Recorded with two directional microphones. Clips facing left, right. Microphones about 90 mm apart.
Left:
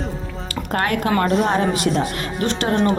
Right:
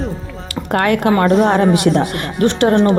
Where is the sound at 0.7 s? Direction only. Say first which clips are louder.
Right 6 dB; 50° right (ahead or behind).